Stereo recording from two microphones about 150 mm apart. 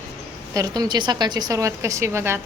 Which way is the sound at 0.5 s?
25° right (ahead or behind).